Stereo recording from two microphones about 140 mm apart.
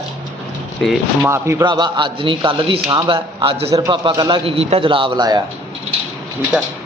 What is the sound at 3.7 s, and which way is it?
Speech, 25° right (ahead or behind).